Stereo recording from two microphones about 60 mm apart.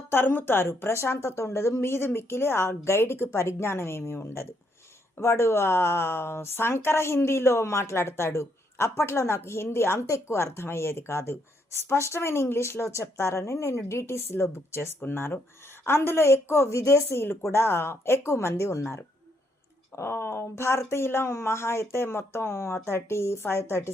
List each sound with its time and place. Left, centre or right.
0.1 s speech: left
17.5 s speech: left